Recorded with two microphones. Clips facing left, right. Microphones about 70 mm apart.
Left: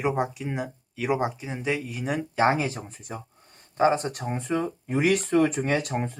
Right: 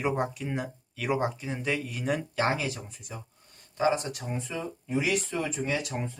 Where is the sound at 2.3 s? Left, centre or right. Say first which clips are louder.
Left 5 dB; left.